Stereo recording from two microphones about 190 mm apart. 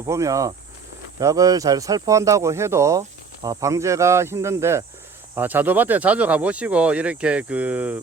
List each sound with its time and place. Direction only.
0.0 s speech: 15° right (ahead or behind)